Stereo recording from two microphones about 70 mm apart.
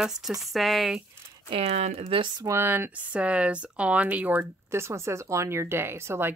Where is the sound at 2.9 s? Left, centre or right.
Centre.